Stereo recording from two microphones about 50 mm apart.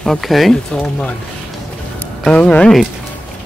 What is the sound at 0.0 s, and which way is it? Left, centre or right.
Speech, centre.